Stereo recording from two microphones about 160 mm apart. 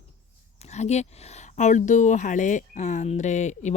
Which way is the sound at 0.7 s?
45° left (ahead or behind).